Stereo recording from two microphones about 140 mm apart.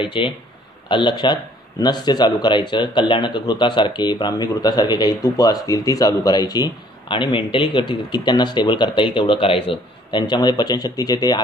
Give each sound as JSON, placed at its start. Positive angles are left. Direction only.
{"t": 0.0, "sound": "speech", "side_deg": 35}